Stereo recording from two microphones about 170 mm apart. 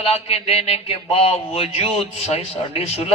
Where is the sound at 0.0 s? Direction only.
35° left (ahead or behind).